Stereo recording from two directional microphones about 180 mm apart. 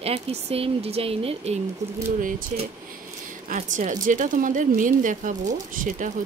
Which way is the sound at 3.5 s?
45° right (ahead or behind).